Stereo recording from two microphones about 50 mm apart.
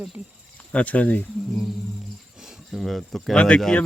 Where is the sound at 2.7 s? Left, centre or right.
Centre.